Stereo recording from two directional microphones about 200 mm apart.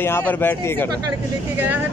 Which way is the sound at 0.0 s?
10° left (ahead or behind).